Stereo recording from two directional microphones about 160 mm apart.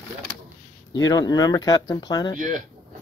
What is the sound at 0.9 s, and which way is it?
Speech, 25° left (ahead or behind).